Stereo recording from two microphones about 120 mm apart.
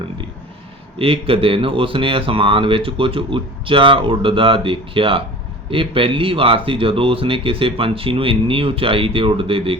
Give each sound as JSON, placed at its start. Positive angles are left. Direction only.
{"t": 0.9, "sound": "speech", "side_deg": -50}